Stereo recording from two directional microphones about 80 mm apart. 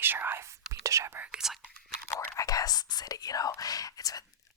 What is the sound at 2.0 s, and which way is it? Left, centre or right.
Whispering, left.